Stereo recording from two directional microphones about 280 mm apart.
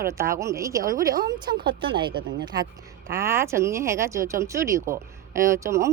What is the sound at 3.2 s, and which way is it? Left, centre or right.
Speech, centre.